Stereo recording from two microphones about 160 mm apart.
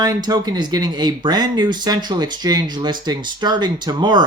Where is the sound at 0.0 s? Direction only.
25° right (ahead or behind).